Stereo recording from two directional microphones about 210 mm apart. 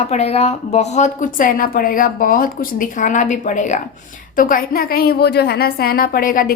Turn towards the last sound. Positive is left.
turn(degrees=40)  # may be behind; listen again after turning